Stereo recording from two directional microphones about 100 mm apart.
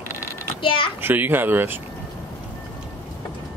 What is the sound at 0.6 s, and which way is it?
Speech, 60° left (ahead or behind).